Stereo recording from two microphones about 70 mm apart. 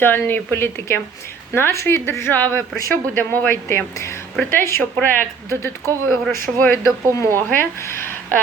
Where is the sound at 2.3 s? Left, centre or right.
Left.